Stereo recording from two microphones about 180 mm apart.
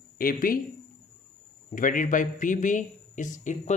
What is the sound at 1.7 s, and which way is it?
A man's voice, 50° left (ahead or behind).